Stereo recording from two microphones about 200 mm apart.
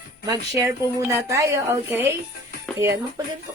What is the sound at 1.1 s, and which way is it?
A woman's voice, 15° right (ahead or behind).